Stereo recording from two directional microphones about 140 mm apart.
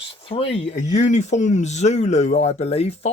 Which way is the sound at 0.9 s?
60° left (ahead or behind).